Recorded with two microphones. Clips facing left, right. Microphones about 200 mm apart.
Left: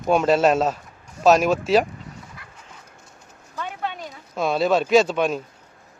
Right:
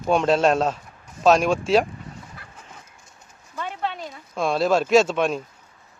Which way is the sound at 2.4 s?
35° right (ahead or behind).